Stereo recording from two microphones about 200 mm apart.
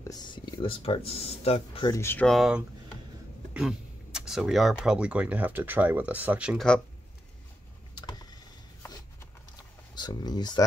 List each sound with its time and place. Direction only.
0.0 s speech: 20° left (ahead or behind)
1.9 s speech: 10° left (ahead or behind)
7.9 s vehicle: 20° left (ahead or behind)
9.9 s speech: 20° left (ahead or behind)